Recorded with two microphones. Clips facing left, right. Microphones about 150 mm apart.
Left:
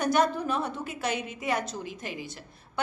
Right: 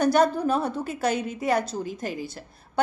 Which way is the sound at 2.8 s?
35° right (ahead or behind).